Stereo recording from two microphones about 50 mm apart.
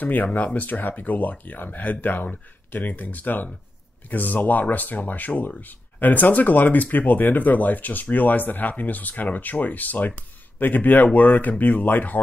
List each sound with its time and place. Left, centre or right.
0.0 s speech: left